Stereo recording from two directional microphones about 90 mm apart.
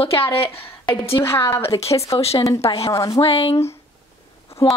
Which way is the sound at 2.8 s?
40° left (ahead or behind).